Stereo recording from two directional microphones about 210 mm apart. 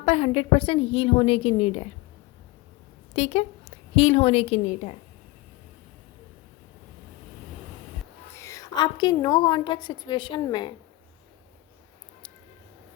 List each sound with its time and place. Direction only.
0.0 s a woman's voice: 30° left (ahead or behind)
3.2 s a woman's voice: 30° left (ahead or behind)
8.4 s a woman's voice: 15° left (ahead or behind)